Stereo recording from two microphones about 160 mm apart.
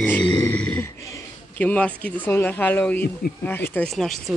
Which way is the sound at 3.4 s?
15° left (ahead or behind).